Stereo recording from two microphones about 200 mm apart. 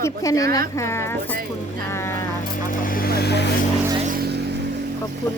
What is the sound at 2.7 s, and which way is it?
Speech, 45° left (ahead or behind).